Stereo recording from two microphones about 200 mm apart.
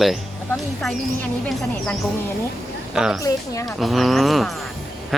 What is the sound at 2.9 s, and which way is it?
Speech, 5° right (ahead or behind).